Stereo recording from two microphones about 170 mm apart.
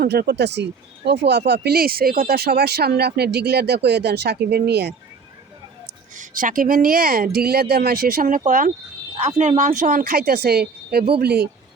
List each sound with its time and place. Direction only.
0.0 s speech: 75° right (ahead or behind)
6.1 s speech: 55° right (ahead or behind)
9.1 s speech: 40° right (ahead or behind); by 11.4 s 70° right (ahead or behind)